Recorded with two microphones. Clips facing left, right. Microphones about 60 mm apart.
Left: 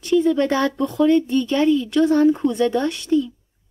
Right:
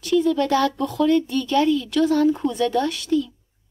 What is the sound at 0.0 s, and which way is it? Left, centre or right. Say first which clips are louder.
A woman's voice: left 2 dB; left.